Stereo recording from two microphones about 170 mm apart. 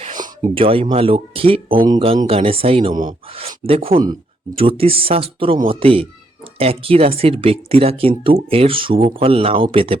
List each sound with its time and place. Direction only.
0.5 s a man's voice: 30° right (ahead or behind)